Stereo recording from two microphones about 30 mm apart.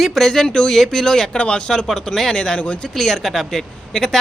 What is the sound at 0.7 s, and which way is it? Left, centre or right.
Speech, centre.